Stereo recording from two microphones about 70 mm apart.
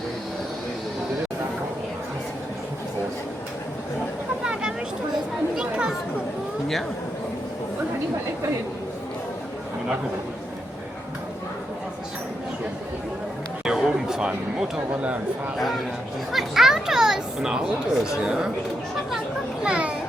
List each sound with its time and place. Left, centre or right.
5.5 s chatter: centre
13.7 s a sound: centre
16.3 s speech: centre
19.6 s a child's voice: centre